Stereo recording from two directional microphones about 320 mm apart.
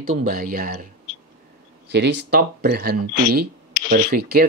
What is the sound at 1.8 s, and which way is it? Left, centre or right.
Speech, right.